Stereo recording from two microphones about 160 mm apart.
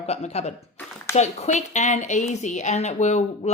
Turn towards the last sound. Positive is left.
turn(degrees=45)  # may be behind; listen again after turning